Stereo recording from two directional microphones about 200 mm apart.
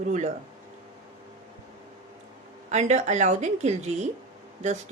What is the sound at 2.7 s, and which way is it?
Speech, 35° right (ahead or behind).